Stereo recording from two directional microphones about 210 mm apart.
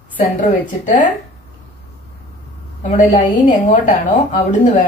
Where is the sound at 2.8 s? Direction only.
35° left (ahead or behind).